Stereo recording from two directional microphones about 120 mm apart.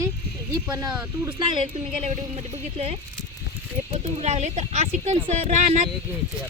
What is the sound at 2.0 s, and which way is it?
Speech, 65° right (ahead or behind).